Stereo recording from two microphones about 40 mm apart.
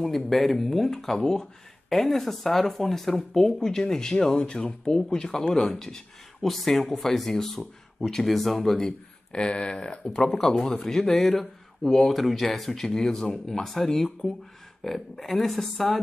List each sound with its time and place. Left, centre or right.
0.0 s speech: centre